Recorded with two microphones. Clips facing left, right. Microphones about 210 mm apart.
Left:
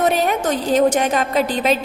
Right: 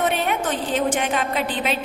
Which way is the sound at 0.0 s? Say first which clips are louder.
Left 5 dB; 40° left (ahead or behind).